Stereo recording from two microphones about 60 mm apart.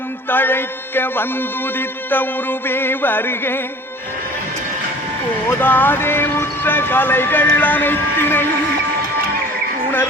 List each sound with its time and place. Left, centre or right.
0.3 s speech: left
5.5 s speech: left